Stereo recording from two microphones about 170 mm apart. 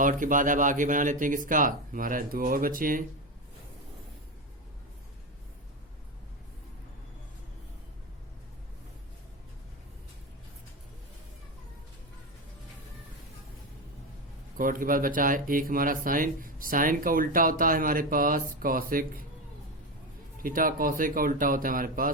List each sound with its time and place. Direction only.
0.0 s speech: 50° right (ahead or behind)
14.6 s speech: 55° right (ahead or behind)
20.4 s speech: 55° right (ahead or behind)